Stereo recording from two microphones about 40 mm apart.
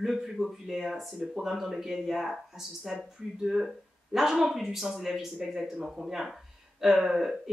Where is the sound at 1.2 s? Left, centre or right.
Right.